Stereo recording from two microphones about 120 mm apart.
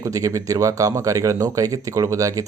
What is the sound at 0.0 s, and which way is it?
Speech, 30° right (ahead or behind).